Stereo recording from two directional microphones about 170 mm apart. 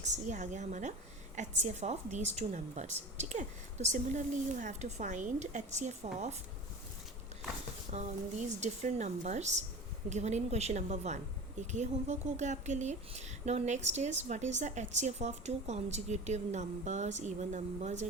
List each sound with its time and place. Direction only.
0.0 s speech: 45° right (ahead or behind)
7.9 s speech: 45° right (ahead or behind)